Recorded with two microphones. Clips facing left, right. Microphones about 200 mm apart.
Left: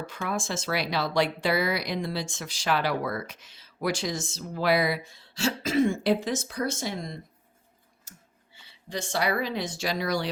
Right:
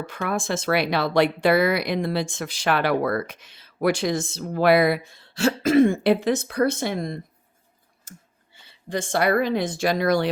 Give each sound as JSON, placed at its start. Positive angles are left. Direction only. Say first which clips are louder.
{"t": 0.0, "sound": "speech", "louder": "right 5 dB", "side_deg": -60}
{"t": 8.1, "sound": "clicking", "louder": "right 8 dB", "side_deg": -50}
{"t": 8.9, "sound": "speech", "louder": "right 6 dB", "side_deg": -55}